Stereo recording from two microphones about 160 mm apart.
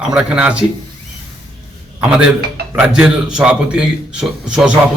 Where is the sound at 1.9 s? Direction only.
5° right (ahead or behind).